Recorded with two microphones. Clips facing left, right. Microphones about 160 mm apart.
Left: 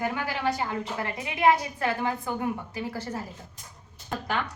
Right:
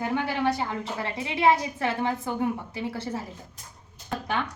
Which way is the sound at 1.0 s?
25° right (ahead or behind).